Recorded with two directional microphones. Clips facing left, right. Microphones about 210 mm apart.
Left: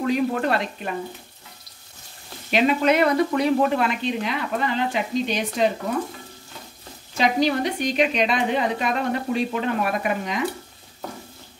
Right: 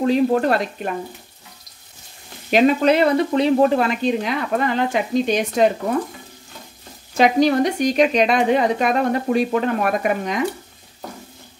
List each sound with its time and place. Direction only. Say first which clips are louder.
0.0 s speech: right 5 dB; 30° right (ahead or behind)
2.5 s speech: right 4 dB; 40° right (ahead or behind)
7.2 s a woman's voice: right 5 dB; 50° right (ahead or behind)